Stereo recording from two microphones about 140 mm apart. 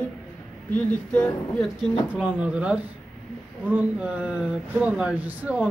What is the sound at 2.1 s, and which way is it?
Speech, 10° right (ahead or behind).